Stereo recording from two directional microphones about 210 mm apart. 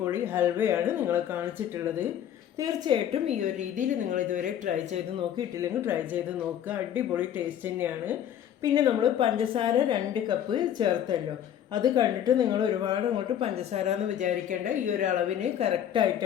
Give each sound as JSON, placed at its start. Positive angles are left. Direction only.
{"t": 0.0, "sound": "speech", "side_deg": -10}
{"t": 5.4, "sound": "speech", "side_deg": -15}
{"t": 8.6, "sound": "a woman's voice", "side_deg": -20}
{"t": 13.7, "sound": "speech", "side_deg": -30}